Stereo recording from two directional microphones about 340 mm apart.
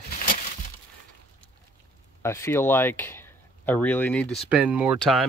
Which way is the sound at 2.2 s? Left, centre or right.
Centre.